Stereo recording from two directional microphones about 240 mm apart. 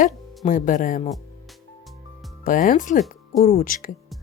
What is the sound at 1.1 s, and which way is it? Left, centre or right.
Music, centre.